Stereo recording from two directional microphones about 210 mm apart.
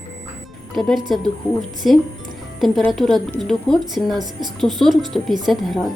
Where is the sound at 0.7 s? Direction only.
Centre (ahead or behind).